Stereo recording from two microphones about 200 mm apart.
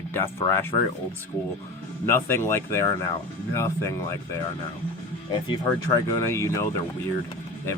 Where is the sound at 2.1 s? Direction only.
10° left (ahead or behind).